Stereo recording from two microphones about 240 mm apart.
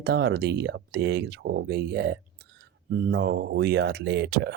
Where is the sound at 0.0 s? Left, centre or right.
Right.